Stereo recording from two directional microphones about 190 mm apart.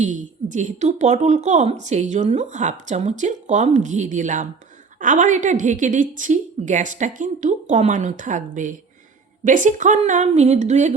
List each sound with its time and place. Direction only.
0.0 s speech: 40° right (ahead or behind)